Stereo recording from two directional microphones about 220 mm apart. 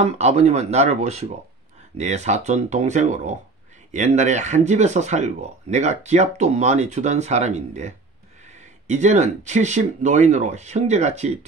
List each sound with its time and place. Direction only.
0.0 s speech: 30° right (ahead or behind)